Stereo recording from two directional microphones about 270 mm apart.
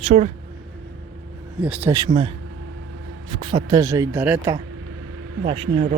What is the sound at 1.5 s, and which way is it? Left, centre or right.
Speech, centre.